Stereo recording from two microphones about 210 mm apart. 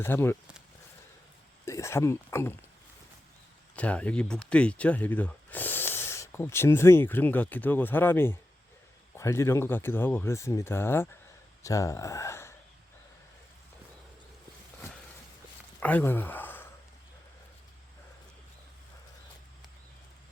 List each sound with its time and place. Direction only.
0.0 s speech: 10° left (ahead or behind)
1.6 s speech: 15° left (ahead or behind)
3.8 s speech: 5° left (ahead or behind)
15.8 s speech: 5° left (ahead or behind)